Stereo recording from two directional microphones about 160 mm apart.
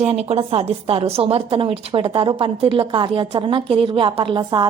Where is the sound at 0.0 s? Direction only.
40° right (ahead or behind).